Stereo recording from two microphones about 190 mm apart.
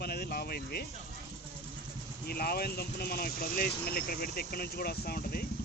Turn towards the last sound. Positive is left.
turn(degrees=55)  # may be behind; listen again after turning